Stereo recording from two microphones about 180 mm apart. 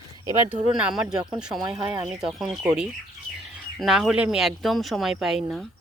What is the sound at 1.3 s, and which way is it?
A woman's voice, 5° right (ahead or behind).